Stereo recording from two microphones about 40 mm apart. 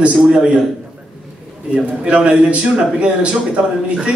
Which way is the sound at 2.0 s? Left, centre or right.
Right.